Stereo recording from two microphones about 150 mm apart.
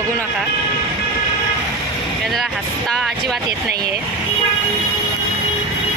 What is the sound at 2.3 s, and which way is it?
Speech, centre (ahead or behind).